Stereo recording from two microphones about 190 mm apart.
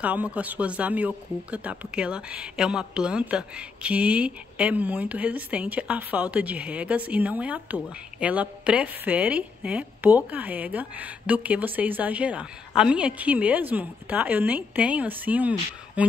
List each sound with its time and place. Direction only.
0.0 s speech: 5° right (ahead or behind)